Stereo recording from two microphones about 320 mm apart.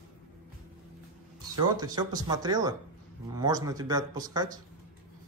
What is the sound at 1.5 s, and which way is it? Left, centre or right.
Speech, centre.